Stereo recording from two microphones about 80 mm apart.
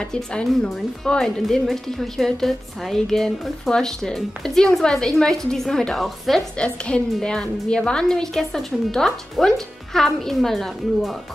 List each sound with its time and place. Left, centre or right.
0.1 s a woman's voice: centre
6.6 s a woman's voice: centre